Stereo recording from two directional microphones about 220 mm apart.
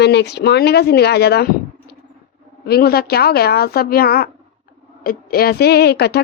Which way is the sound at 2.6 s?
45° left (ahead or behind).